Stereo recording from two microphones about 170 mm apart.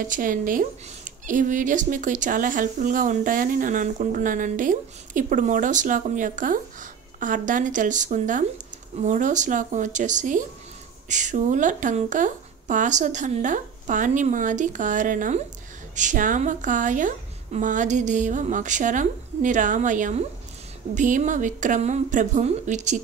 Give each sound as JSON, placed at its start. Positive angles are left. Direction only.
{"t": 0.0, "sound": "speech", "side_deg": -50}